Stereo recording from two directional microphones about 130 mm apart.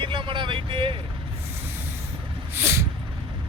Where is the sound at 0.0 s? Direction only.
40° right (ahead or behind).